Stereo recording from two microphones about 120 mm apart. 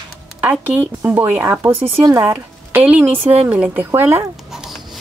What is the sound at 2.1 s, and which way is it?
A woman's voice, 20° right (ahead or behind).